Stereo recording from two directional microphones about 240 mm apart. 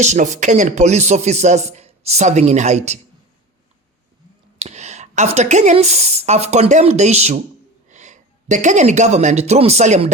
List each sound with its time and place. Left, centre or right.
0.0 s speech: right
4.6 s speech: right